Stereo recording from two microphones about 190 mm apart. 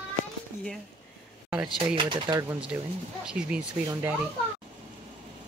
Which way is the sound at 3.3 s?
5° right (ahead or behind).